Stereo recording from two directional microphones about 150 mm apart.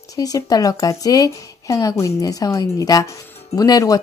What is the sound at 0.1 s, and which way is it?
Speech, 25° left (ahead or behind).